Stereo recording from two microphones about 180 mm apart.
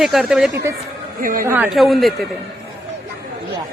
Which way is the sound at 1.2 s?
50° right (ahead or behind).